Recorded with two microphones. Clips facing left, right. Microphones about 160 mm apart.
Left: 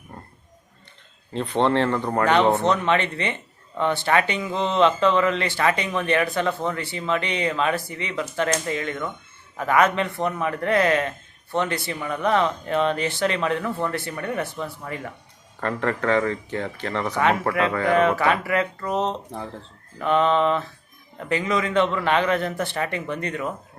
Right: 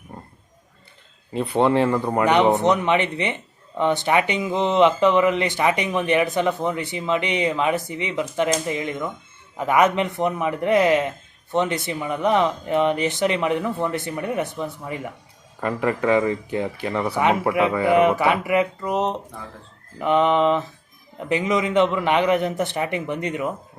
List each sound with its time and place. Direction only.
1.3 s a man's voice: 10° right (ahead or behind)